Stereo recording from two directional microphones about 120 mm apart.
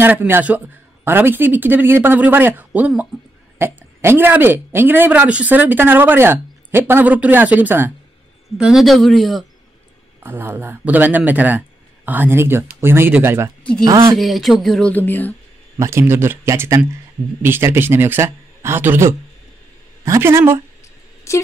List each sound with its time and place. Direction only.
0.0 s speech: 15° right (ahead or behind)
8.5 s speech: 5° right (ahead or behind)
10.2 s speech: 20° right (ahead or behind)
14.1 s speech: centre (ahead or behind)
15.8 s speech: 20° right (ahead or behind)
21.3 s a sound: 25° left (ahead or behind)